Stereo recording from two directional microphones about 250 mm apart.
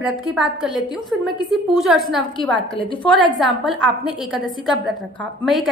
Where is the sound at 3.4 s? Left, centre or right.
Centre.